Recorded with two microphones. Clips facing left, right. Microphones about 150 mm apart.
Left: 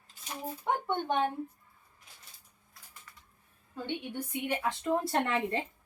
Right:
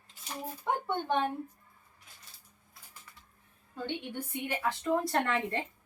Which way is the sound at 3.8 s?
15° left (ahead or behind).